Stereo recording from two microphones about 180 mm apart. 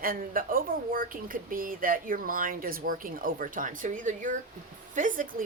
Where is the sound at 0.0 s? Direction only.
50° right (ahead or behind).